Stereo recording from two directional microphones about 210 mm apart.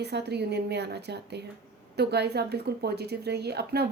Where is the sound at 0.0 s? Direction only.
50° right (ahead or behind).